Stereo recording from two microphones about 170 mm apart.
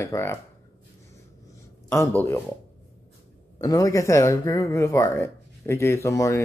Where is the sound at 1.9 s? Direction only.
15° left (ahead or behind).